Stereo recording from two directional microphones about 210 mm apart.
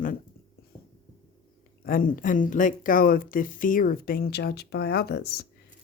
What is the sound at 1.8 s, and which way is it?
Speech, 40° left (ahead or behind).